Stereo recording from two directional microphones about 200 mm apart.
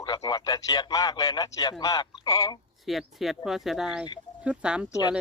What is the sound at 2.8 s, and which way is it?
Speech, centre (ahead or behind).